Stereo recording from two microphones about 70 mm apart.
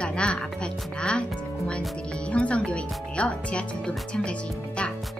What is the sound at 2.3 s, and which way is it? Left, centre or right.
Speech, centre.